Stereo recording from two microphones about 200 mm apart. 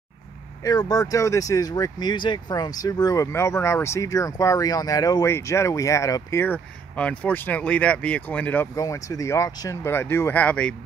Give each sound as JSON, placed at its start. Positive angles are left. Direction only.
{"t": 0.7, "sound": "speech", "side_deg": 20}